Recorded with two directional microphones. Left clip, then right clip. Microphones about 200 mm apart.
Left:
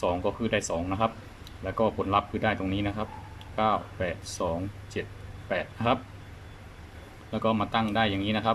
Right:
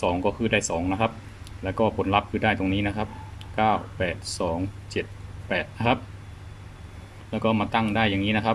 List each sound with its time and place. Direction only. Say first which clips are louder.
0.0 s speech: right 3 dB; 5° right (ahead or behind)
7.3 s speech: right 3 dB; 5° right (ahead or behind)